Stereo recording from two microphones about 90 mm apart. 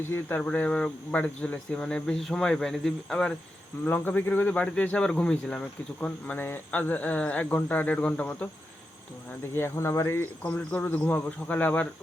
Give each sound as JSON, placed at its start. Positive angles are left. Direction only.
{"t": 0.1, "sound": "speech", "side_deg": 25}
{"t": 3.8, "sound": "speech", "side_deg": 20}
{"t": 9.6, "sound": "speech", "side_deg": 30}